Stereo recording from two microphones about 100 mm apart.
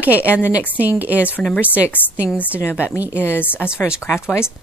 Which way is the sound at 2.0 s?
20° left (ahead or behind).